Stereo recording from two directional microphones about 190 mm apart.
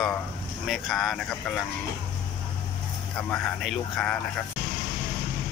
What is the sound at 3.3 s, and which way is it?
Speech, 5° left (ahead or behind).